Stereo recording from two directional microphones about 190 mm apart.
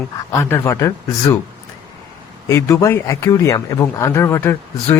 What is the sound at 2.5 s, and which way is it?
A man's voice, 15° left (ahead or behind).